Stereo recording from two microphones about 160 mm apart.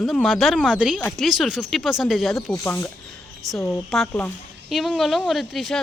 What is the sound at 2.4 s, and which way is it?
Speech, 15° left (ahead or behind).